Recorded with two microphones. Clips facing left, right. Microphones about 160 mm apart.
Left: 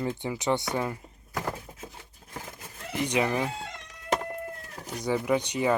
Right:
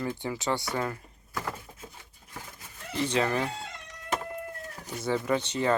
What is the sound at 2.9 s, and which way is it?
Speech, 15° left (ahead or behind).